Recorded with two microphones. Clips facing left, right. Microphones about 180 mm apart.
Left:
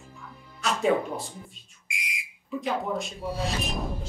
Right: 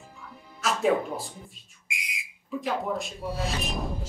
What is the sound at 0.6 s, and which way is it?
Speech, centre (ahead or behind).